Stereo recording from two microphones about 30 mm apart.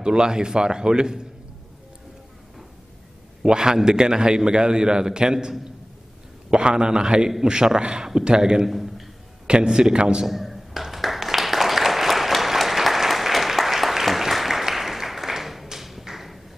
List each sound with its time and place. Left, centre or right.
0.0 s a man's voice: right
3.4 s a man's voice: right
6.5 s a man's voice: right
8.6 s a sound: centre
9.7 s a man's voice: centre
10.2 s a sound: centre